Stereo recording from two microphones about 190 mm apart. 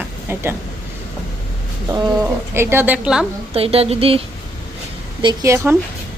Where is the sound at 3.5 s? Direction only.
30° right (ahead or behind); by 5.7 s 15° right (ahead or behind).